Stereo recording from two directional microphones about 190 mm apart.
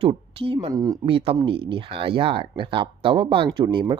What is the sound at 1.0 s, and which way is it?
Speech, 30° right (ahead or behind).